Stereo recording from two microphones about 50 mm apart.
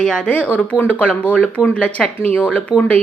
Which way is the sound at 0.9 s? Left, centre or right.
Left.